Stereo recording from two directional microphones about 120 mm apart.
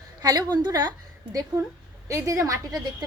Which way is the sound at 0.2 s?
35° right (ahead or behind).